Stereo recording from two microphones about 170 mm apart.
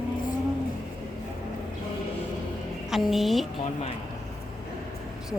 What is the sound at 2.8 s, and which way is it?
Speech, centre (ahead or behind).